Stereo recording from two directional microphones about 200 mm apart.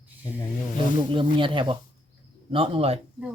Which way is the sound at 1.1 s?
25° right (ahead or behind).